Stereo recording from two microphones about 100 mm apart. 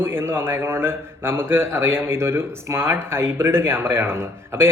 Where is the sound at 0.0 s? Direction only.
20° right (ahead or behind).